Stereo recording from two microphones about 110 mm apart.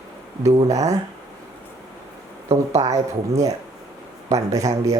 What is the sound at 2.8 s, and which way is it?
Speech, 55° right (ahead or behind).